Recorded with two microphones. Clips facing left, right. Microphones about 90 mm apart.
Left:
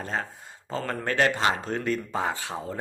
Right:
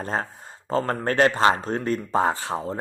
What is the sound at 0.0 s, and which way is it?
Speech, 40° right (ahead or behind).